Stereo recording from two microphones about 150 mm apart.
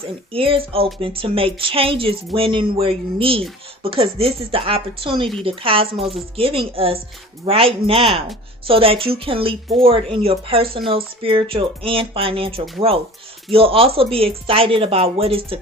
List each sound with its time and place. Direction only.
0.3 s speech: 40° right (ahead or behind)